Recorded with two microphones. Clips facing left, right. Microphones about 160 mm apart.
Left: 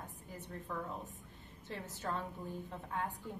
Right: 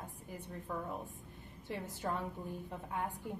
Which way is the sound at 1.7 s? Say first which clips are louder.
Right 2 dB; 15° right (ahead or behind).